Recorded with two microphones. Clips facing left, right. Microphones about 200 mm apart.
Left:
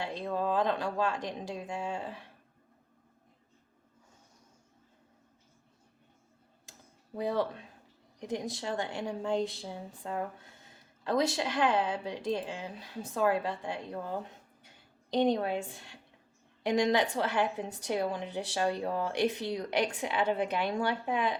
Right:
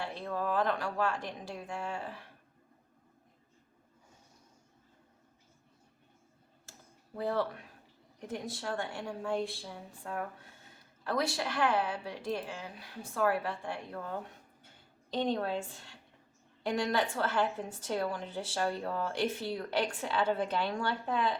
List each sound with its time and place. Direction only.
0.0 s a woman's voice: 15° left (ahead or behind)
7.2 s a woman's voice: 15° left (ahead or behind)